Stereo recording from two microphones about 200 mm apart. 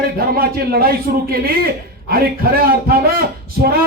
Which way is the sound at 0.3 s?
50° right (ahead or behind).